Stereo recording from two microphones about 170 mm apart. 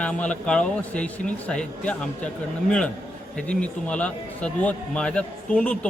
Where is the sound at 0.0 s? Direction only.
5° left (ahead or behind).